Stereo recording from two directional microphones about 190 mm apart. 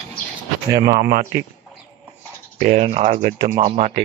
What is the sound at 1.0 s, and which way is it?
Speech, 50° right (ahead or behind).